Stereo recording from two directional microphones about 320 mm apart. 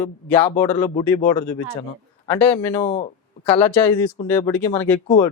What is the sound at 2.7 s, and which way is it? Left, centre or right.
Speech, centre.